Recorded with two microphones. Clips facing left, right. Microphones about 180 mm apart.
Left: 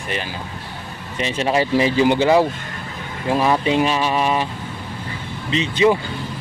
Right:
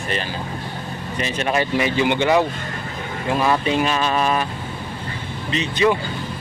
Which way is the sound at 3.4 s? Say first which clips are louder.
Left 2 dB; 20° left (ahead or behind).